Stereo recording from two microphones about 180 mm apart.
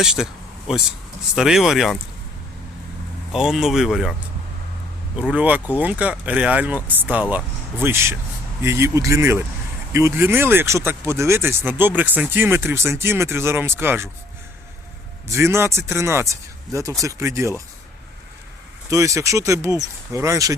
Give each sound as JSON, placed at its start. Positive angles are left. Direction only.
{"t": 0.0, "sound": "speech", "side_deg": 0}
{"t": 1.4, "sound": "speech", "side_deg": 0}
{"t": 3.3, "sound": "speech", "side_deg": -5}
{"t": 5.1, "sound": "speech", "side_deg": -10}
{"t": 15.3, "sound": "speech", "side_deg": -15}
{"t": 18.9, "sound": "speech", "side_deg": -15}